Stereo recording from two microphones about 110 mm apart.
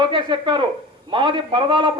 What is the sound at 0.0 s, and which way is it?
A man's voice, 50° right (ahead or behind).